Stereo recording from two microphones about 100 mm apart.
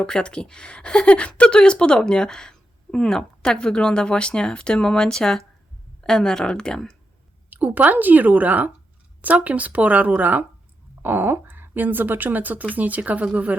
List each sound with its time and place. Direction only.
0.0 s speech: 10° left (ahead or behind)
7.5 s speech: 15° right (ahead or behind)